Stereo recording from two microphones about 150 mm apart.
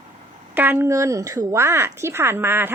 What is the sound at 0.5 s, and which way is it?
Speech, 10° right (ahead or behind).